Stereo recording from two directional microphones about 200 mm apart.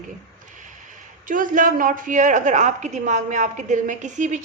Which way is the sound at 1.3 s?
40° right (ahead or behind).